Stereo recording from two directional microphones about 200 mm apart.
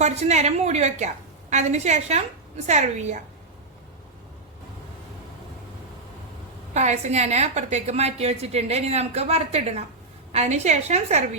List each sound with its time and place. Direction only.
0.0 s a woman's voice: 35° right (ahead or behind)
6.7 s a woman's voice: 35° right (ahead or behind)